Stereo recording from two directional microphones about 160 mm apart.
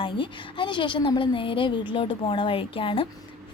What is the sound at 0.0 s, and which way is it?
Speech, 30° left (ahead or behind).